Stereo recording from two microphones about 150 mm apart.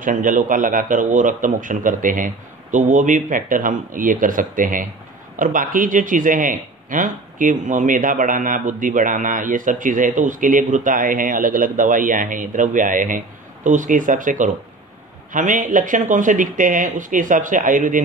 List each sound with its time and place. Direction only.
0.0 s speech: 60° right (ahead or behind)